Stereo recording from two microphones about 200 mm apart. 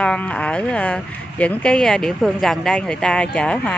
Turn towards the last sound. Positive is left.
turn(degrees=5)  # may be behind; listen again after turning